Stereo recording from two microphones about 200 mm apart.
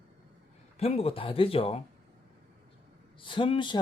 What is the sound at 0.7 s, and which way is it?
Speech, 30° left (ahead or behind).